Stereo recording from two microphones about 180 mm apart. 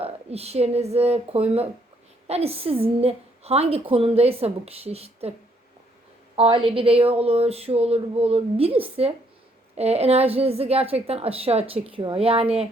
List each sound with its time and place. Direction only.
0.0 s a woman's voice: 35° right (ahead or behind)
6.3 s a woman's voice: 30° right (ahead or behind)